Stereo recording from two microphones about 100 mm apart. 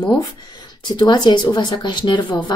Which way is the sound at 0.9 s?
45° left (ahead or behind).